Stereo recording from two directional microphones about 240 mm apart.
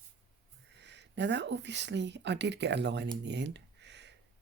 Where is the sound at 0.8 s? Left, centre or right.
Right.